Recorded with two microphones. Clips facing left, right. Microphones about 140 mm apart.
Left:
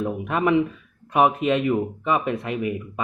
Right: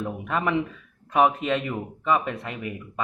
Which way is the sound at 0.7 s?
15° left (ahead or behind).